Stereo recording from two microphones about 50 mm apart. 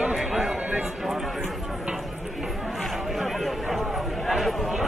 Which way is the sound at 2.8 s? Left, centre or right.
Centre.